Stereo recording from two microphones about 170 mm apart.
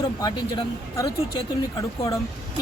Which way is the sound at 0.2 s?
20° left (ahead or behind).